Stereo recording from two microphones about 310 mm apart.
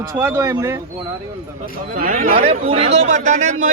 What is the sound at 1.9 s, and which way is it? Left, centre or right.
A man's voice, right.